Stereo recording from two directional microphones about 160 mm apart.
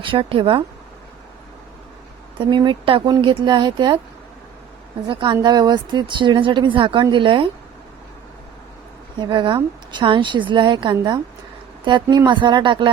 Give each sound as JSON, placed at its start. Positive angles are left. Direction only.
{"t": 0.0, "sound": "speech", "side_deg": -30}
{"t": 2.4, "sound": "a woman's voice", "side_deg": -30}
{"t": 5.0, "sound": "a woman's voice", "side_deg": -30}
{"t": 9.1, "sound": "a woman's voice", "side_deg": -30}